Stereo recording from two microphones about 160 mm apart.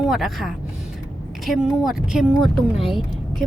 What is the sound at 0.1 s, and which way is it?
Speech, centre (ahead or behind).